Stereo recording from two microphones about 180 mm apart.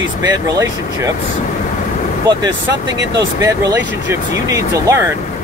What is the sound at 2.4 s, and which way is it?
Speech, 20° right (ahead or behind).